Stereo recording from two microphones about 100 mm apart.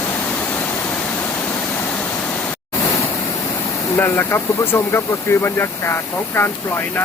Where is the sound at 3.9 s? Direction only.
25° left (ahead or behind).